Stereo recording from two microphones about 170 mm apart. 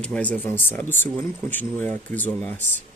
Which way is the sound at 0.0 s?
5° left (ahead or behind).